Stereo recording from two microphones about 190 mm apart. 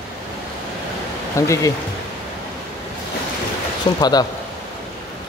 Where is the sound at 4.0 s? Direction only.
20° left (ahead or behind).